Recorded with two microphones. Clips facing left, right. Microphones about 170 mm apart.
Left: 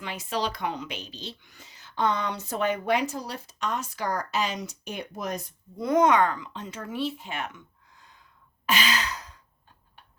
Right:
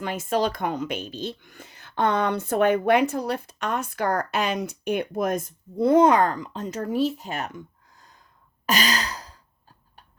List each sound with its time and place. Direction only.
0.0 s speech: 50° right (ahead or behind)
5.7 s speech: 30° right (ahead or behind)
8.6 s sigh: 40° right (ahead or behind)